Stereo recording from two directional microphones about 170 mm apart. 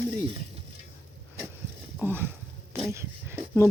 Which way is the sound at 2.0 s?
10° right (ahead or behind).